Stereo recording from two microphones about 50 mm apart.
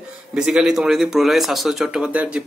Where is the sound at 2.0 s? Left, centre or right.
Right.